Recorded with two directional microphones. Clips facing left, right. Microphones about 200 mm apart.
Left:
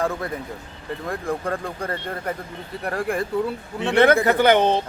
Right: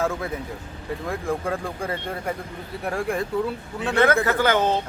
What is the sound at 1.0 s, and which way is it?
Speech, centre (ahead or behind).